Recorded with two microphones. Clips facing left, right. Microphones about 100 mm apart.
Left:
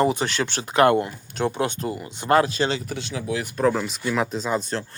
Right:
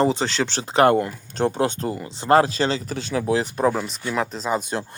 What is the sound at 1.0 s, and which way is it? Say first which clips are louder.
Speech: right 2 dB; 35° right (ahead or behind).